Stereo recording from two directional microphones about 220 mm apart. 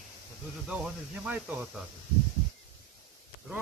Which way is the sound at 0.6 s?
5° right (ahead or behind).